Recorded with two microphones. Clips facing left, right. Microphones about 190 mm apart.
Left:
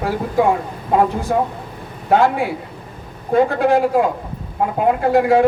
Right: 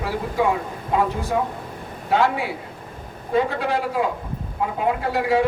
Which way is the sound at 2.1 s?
50° left (ahead or behind).